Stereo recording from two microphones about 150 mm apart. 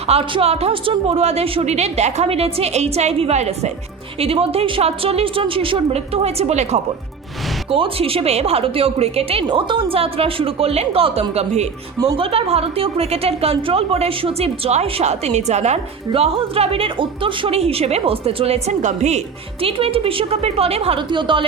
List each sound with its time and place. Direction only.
0.1 s a woman's voice: 40° right (ahead or behind)